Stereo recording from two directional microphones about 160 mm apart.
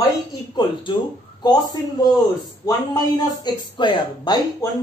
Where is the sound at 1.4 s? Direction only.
25° left (ahead or behind).